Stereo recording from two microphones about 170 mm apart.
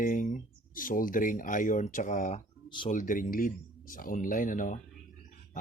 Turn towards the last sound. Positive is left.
turn(degrees=50)  # may be behind; listen again after turning